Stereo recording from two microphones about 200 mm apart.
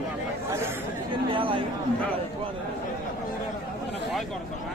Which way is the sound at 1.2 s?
25° right (ahead or behind).